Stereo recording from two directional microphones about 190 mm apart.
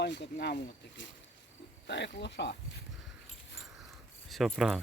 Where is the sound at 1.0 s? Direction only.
75° left (ahead or behind).